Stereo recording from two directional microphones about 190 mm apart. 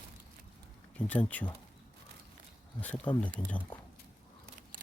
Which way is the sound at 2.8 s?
10° left (ahead or behind).